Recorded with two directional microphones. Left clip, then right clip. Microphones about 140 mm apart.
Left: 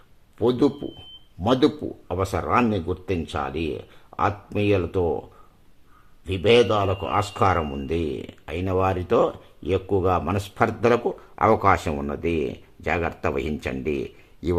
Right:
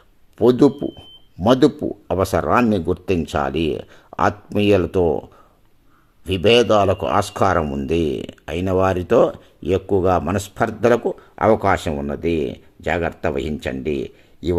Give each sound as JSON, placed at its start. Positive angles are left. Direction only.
{"t": 0.8, "sound": "speech", "side_deg": -55}
{"t": 6.2, "sound": "speech", "side_deg": -45}
{"t": 7.6, "sound": "speech", "side_deg": -5}
{"t": 7.9, "sound": "speech", "side_deg": -40}